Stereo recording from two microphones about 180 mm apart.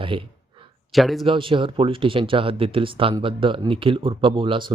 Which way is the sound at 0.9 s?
Centre (ahead or behind).